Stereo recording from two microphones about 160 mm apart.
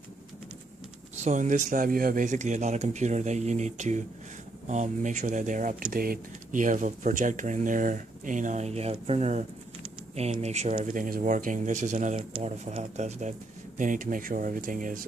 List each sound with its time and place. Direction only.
1.1 s speech: 50° right (ahead or behind)